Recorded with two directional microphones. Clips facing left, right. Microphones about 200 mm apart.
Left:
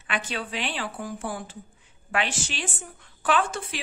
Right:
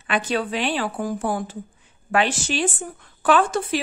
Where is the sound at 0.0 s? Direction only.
40° right (ahead or behind).